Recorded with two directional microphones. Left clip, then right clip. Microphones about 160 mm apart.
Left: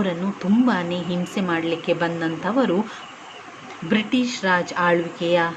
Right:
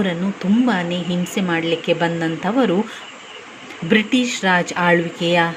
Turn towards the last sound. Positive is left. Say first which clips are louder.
# right 3 dB
turn(degrees=-20)  # may be behind; listen again after turning